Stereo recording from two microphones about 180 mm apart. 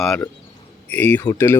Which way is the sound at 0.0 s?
5° left (ahead or behind).